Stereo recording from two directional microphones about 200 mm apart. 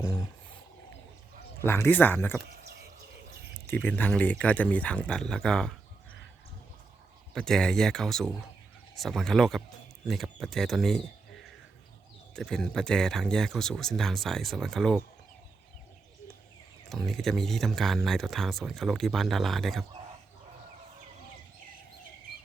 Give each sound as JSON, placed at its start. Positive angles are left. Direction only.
{"t": 0.0, "sound": "wild animals", "side_deg": 15}
{"t": 1.6, "sound": "speech", "side_deg": 10}
{"t": 3.7, "sound": "speech", "side_deg": 10}
{"t": 7.3, "sound": "speech", "side_deg": 5}
{"t": 12.4, "sound": "speech", "side_deg": 5}
{"t": 16.9, "sound": "speech", "side_deg": 0}